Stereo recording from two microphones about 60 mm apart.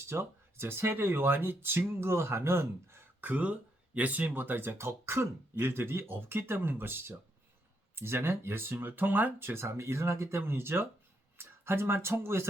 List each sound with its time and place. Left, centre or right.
0.1 s speech: right
3.2 s speech: right